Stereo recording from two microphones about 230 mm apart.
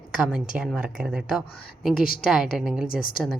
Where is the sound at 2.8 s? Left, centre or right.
Left.